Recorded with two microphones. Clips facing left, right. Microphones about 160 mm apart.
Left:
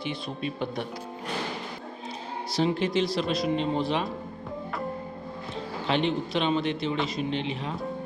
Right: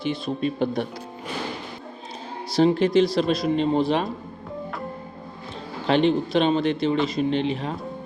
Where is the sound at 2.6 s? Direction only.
40° right (ahead or behind).